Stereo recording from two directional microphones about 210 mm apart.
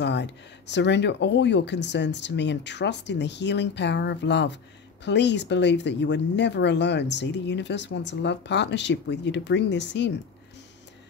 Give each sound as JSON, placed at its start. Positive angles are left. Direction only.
{"t": 0.0, "sound": "speech", "side_deg": 55}